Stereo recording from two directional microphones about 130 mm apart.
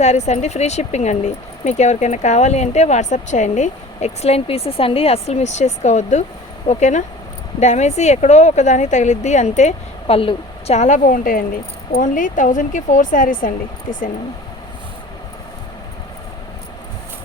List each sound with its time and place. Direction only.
0.0 s speech: 60° left (ahead or behind)
10.2 s a woman's voice: 45° left (ahead or behind)
10.8 s a woman's voice: 70° left (ahead or behind); by 13.5 s 90° left